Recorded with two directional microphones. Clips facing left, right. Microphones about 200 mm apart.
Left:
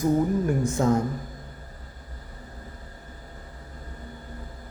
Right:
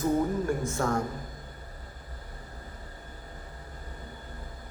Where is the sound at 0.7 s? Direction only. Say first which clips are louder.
Left 6 dB; 20° left (ahead or behind).